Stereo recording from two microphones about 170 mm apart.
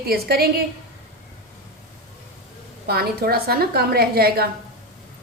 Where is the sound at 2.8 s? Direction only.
65° right (ahead or behind).